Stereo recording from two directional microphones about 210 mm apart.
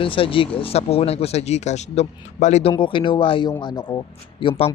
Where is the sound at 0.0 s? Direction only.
25° left (ahead or behind).